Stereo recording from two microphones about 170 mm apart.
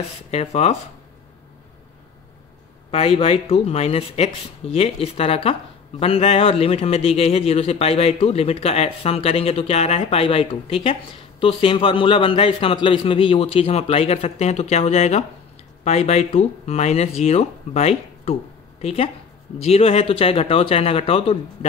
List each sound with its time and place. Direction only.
0.3 s speech: 35° left (ahead or behind)
2.9 s speech: 35° left (ahead or behind)